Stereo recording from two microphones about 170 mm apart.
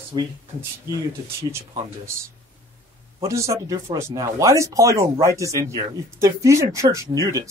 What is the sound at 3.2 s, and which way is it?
Speech, 20° right (ahead or behind).